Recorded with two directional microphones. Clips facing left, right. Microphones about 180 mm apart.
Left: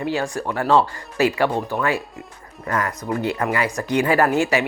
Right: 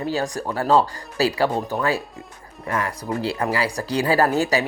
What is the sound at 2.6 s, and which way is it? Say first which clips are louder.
Speech: left 1 dB; 25° right (ahead or behind).